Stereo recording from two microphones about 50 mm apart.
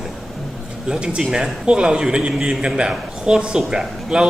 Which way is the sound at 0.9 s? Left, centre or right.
Centre.